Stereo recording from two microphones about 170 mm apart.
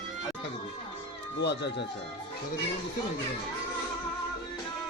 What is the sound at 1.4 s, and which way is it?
Speech, 85° left.